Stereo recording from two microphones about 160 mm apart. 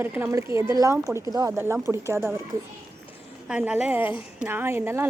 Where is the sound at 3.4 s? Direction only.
5° right (ahead or behind).